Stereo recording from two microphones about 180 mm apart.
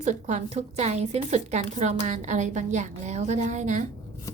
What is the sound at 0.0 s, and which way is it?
A woman's voice, 40° right (ahead or behind).